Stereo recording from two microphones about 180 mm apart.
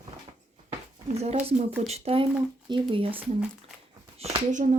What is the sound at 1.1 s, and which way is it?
Speech, 35° right (ahead or behind).